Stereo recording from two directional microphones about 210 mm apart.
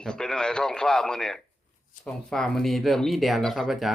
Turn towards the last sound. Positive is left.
turn(degrees=0)  # may be behind; listen again after turning